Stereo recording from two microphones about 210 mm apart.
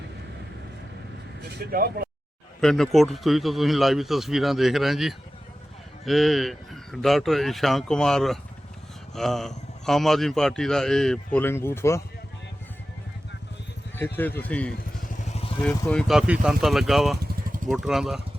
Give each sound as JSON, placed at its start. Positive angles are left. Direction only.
{"t": 1.4, "sound": "speech", "side_deg": -50}
{"t": 2.6, "sound": "a man's voice", "side_deg": 0}
{"t": 13.9, "sound": "a man's voice", "side_deg": 10}